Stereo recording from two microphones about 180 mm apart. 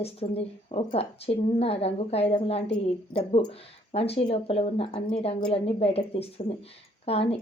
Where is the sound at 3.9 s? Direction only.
35° left (ahead or behind).